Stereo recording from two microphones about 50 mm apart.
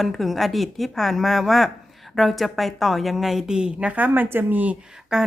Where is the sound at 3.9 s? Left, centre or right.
Right.